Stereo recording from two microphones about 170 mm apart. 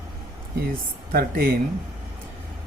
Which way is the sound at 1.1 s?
60° right (ahead or behind).